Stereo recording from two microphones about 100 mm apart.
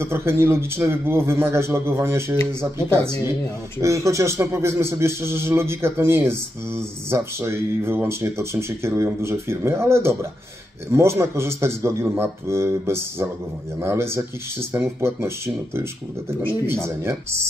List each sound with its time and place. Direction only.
0.0 s speech: 25° right (ahead or behind)
3.8 s speech: 30° right (ahead or behind)